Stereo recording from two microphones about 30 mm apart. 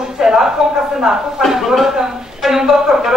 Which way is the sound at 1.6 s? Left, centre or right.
Centre.